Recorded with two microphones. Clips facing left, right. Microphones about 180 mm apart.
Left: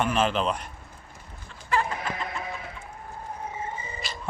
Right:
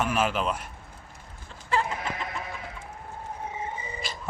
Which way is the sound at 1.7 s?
30° right (ahead or behind).